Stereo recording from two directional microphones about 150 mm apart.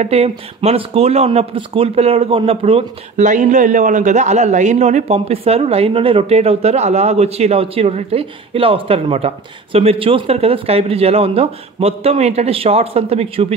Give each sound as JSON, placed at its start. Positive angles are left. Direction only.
{"t": 0.0, "sound": "speech", "side_deg": -45}
{"t": 3.2, "sound": "a man's voice", "side_deg": -55}